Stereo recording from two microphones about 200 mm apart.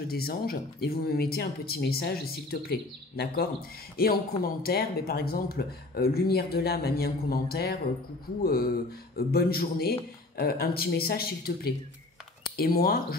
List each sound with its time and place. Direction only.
0.1 s speech: 50° left (ahead or behind)
9.1 s speech: 50° left (ahead or behind)